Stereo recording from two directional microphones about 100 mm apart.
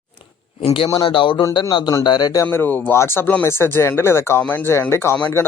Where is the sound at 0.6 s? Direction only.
65° left (ahead or behind); by 2.4 s 45° left (ahead or behind).